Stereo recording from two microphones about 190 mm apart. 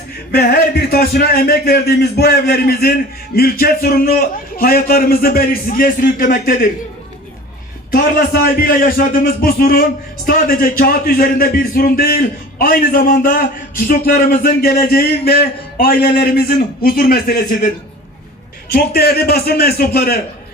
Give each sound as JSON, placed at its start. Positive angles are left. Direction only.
{"t": 0.3, "sound": "a man's voice", "side_deg": 55}
{"t": 7.9, "sound": "a man's voice", "side_deg": 50}
{"t": 18.7, "sound": "a man's voice", "side_deg": 55}